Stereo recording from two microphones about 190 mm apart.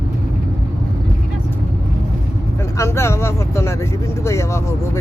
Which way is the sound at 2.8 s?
15° left (ahead or behind).